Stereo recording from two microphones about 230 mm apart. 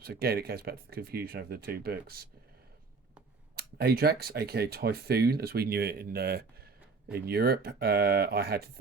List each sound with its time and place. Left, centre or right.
0.0 s speech: right
3.5 s speech: right